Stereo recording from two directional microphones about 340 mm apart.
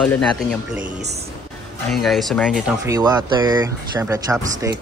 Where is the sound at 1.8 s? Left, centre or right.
Centre.